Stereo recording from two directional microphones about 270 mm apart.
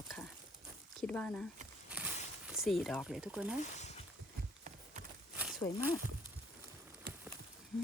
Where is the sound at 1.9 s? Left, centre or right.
Centre.